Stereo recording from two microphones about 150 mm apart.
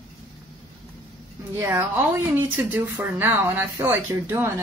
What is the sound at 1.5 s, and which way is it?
Speech, 15° right (ahead or behind).